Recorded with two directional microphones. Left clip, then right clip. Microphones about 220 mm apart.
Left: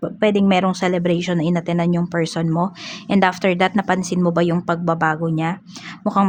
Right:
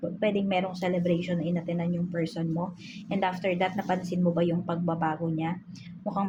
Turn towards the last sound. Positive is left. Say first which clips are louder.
# left 13 dB
turn(degrees=50)  # may be behind; listen again after turning